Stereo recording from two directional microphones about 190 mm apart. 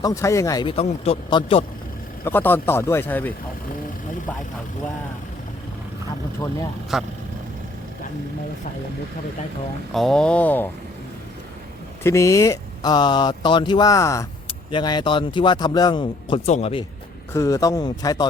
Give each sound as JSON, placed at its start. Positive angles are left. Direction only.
{"t": 0.0, "sound": "speech", "side_deg": 15}
{"t": 0.7, "sound": "speech", "side_deg": 30}
{"t": 2.2, "sound": "speech", "side_deg": 10}
{"t": 6.9, "sound": "speech", "side_deg": 0}
{"t": 9.9, "sound": "speech", "side_deg": 0}
{"t": 12.0, "sound": "speech", "side_deg": 15}
{"t": 17.3, "sound": "speech", "side_deg": 15}